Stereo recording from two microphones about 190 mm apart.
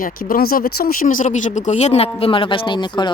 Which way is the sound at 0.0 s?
50° left (ahead or behind).